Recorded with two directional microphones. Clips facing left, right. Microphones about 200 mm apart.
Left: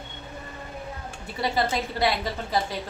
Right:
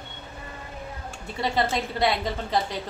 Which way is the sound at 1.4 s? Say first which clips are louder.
Even; 5° left (ahead or behind).